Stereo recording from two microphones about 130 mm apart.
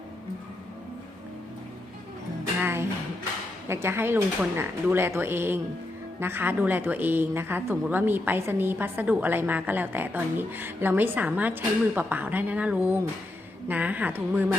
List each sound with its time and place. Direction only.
2.6 s music: 20° right (ahead or behind)
3.7 s speech: 20° right (ahead or behind)